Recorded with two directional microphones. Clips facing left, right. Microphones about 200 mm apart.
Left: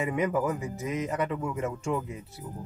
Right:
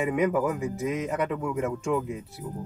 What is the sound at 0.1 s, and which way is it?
Speech, 15° right (ahead or behind).